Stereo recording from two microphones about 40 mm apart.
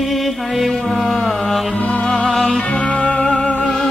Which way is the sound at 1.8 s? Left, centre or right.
Left.